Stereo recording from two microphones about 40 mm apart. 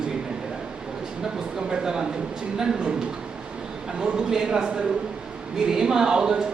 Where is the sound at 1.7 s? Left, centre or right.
Centre.